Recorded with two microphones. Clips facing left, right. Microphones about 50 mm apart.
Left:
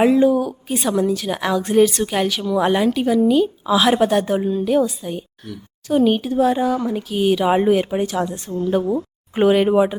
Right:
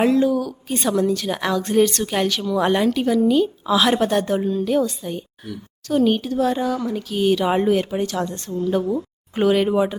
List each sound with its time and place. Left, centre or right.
0.0 s speech: centre
0.7 s a woman's voice: centre